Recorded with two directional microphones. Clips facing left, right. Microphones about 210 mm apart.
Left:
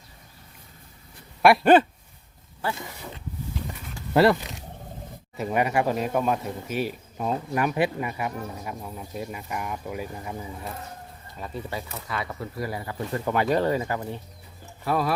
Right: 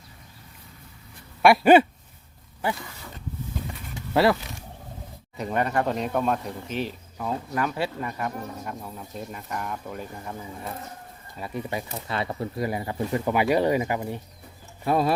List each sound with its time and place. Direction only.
1.4 s a sound: centre (ahead or behind)
2.7 s speech: 20° left (ahead or behind)
4.1 s speech: centre (ahead or behind)
4.4 s roaring cats: 15° left (ahead or behind)
5.4 s speech: 10° left (ahead or behind)
11.3 s speech: 10° right (ahead or behind)
11.9 s speech: 30° right (ahead or behind)
13.2 s speech: 10° right (ahead or behind)
14.8 s speech: 25° right (ahead or behind)